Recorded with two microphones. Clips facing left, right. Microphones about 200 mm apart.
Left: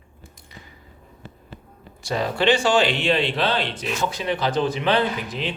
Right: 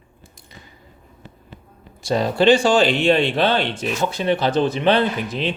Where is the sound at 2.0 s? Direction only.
35° right (ahead or behind).